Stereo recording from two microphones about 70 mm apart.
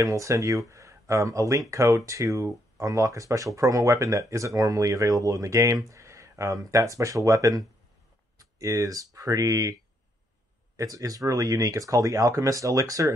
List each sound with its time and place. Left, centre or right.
0.0 s speech: right
10.8 s speech: right